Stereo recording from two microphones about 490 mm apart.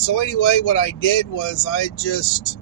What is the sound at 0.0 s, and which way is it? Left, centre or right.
Speech, left.